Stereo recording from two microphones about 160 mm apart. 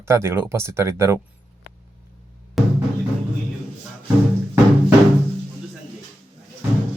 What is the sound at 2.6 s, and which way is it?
Music, centre (ahead or behind).